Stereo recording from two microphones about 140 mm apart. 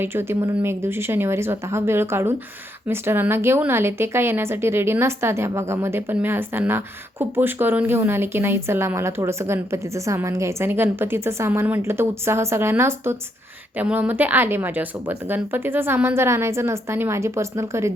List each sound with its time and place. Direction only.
0.0 s a woman's voice: 15° right (ahead or behind)